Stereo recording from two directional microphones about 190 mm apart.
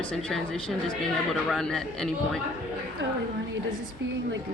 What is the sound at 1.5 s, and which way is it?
Speech, 5° left (ahead or behind).